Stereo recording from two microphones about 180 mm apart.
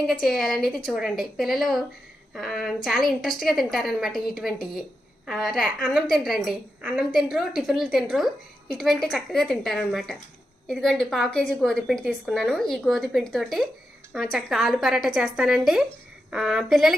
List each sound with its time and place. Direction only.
0.0 s a woman's voice: centre (ahead or behind)